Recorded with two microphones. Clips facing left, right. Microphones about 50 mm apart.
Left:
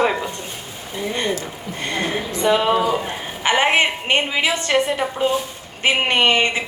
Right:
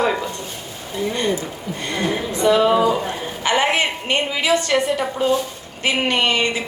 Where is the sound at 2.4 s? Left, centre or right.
Left.